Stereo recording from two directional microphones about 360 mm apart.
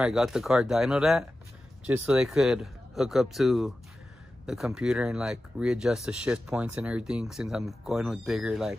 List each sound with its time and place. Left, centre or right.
0.0 s speech: centre